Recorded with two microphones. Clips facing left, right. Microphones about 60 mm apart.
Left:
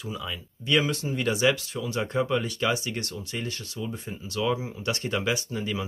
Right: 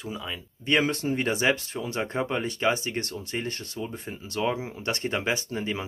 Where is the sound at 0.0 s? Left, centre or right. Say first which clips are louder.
Even; right.